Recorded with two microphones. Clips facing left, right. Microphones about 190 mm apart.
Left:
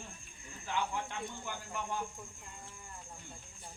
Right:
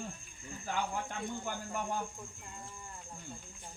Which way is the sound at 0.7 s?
45° right (ahead or behind).